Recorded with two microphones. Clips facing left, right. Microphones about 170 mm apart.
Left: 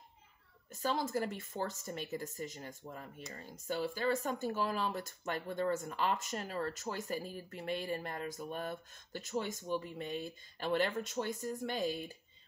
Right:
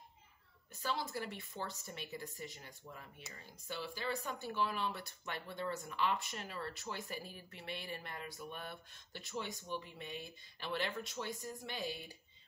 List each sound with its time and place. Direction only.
0.7 s speech: 45° left (ahead or behind)